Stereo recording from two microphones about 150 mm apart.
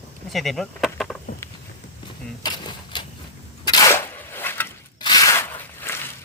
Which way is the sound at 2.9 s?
30° left (ahead or behind).